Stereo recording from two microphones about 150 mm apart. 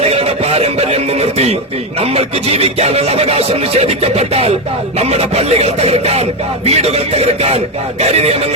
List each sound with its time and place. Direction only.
0.0 s speech: 45° right (ahead or behind)